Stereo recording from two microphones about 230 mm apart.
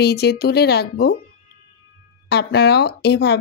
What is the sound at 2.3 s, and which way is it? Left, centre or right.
Speech, left.